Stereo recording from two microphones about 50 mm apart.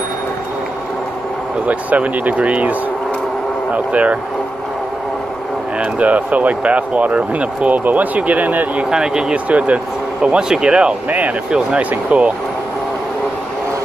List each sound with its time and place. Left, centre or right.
1.7 s speech: right
3.7 s speech: right
5.8 s speech: right
8.9 s speech: centre
9.3 s speech: right
11.1 s speech: right